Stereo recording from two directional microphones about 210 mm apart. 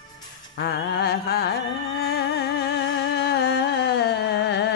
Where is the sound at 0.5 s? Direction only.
50° left (ahead or behind).